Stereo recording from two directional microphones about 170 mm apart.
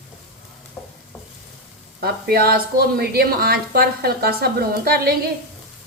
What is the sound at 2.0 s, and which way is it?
A woman's voice, 65° right (ahead or behind).